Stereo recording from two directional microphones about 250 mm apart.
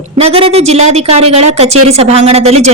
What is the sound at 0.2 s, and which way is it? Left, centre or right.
Speech, right.